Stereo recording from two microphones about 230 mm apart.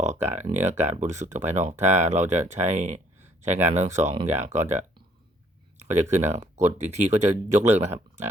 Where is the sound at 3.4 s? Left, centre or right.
Right.